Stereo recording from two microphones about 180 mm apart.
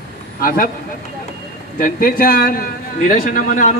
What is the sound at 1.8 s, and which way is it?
A man's voice, 50° left (ahead or behind).